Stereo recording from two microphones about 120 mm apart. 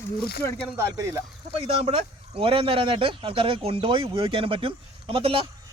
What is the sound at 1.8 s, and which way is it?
Speech, 55° right (ahead or behind).